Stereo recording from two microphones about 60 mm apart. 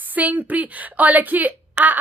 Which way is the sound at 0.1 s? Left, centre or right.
Right.